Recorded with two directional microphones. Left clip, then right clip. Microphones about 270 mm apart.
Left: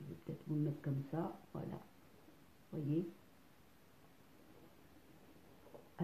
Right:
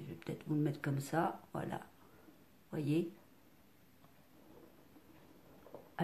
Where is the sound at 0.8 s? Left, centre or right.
Right.